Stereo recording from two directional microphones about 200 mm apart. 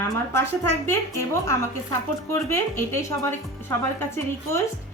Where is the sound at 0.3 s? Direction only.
10° left (ahead or behind).